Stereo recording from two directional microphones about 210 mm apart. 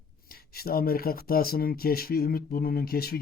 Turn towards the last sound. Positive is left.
turn(degrees=45)  # may be behind; listen again after turning